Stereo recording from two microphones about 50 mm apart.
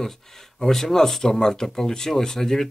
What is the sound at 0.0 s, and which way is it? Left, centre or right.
Speech, centre.